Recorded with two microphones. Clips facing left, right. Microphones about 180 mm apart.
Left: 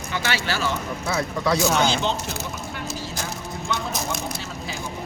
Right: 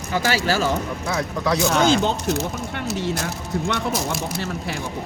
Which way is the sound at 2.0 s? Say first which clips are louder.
Right 4 dB; 65° right (ahead or behind).